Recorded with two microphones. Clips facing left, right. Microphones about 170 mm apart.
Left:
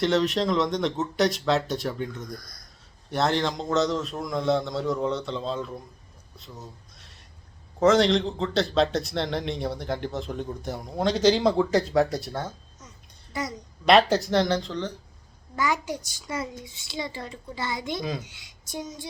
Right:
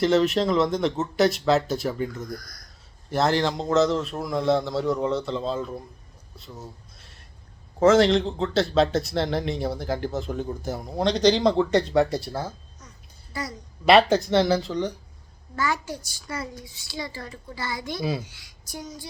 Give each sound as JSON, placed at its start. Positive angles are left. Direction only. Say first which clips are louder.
{"t": 0.0, "sound": "a man's voice", "louder": "right 3 dB", "side_deg": 0}
{"t": 2.4, "sound": "speech", "louder": "right 2 dB", "side_deg": 25}
{"t": 3.1, "sound": "a man's voice", "louder": "right 2 dB", "side_deg": 0}
{"t": 6.3, "sound": "a sound", "louder": "right 2 dB", "side_deg": 0}
{"t": 7.8, "sound": "a man's voice", "louder": "right 2 dB", "side_deg": 0}
{"t": 13.3, "sound": "a child's voice", "louder": "left 2 dB", "side_deg": 20}
{"t": 13.8, "sound": "a man's voice", "louder": "right 2 dB", "side_deg": 0}
{"t": 15.5, "sound": "a child's voice", "louder": "left 1 dB", "side_deg": 15}